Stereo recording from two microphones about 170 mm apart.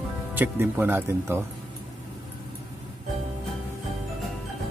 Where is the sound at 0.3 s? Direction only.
10° right (ahead or behind).